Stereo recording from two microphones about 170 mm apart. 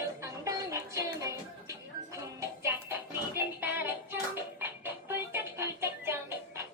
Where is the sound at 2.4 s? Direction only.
15° right (ahead or behind).